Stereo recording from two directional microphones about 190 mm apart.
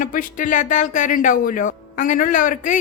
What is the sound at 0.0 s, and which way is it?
Speech, 45° left (ahead or behind).